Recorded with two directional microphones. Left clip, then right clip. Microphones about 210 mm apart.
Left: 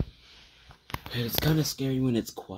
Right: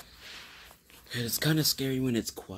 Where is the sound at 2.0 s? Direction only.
Centre (ahead or behind).